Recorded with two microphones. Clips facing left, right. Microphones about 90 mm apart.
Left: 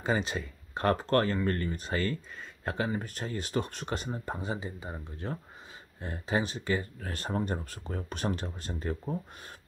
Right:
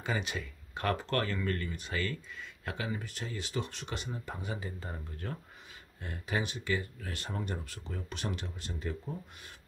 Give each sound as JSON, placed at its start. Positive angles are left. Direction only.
{"t": 0.0, "sound": "speech", "side_deg": 35}
{"t": 4.6, "sound": "speech", "side_deg": 15}
{"t": 5.1, "sound": "speech", "side_deg": 25}